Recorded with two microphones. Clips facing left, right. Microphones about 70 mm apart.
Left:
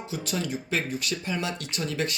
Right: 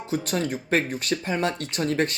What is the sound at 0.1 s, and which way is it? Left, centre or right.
Speech, right.